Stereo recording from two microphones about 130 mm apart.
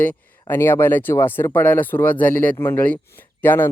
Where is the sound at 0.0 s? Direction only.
15° left (ahead or behind).